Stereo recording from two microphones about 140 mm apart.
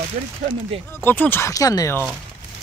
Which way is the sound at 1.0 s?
15° left (ahead or behind).